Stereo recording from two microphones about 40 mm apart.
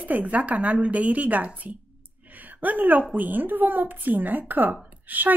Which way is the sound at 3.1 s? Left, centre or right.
Right.